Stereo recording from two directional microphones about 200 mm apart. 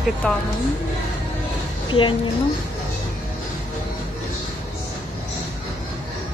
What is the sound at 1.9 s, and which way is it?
Speech, 25° left (ahead or behind).